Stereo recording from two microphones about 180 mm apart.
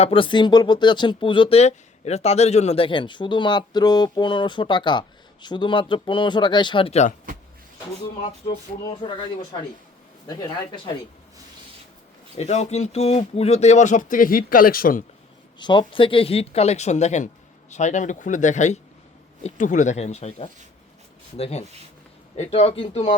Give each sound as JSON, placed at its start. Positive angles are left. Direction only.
{"t": 0.0, "sound": "speech", "side_deg": 30}
{"t": 8.4, "sound": "speech", "side_deg": 25}
{"t": 12.4, "sound": "speech", "side_deg": 40}
{"t": 15.5, "sound": "speech", "side_deg": 25}